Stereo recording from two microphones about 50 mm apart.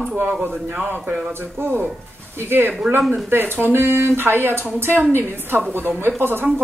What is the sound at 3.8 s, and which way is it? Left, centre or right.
Speech, right.